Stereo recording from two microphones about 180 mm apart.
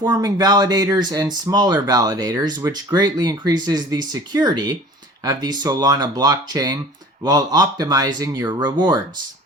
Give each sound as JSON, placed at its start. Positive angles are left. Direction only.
{"t": 0.0, "sound": "speech", "side_deg": -20}